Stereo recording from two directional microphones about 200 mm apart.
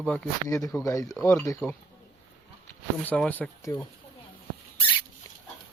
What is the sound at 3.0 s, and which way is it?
Speech, 5° left (ahead or behind).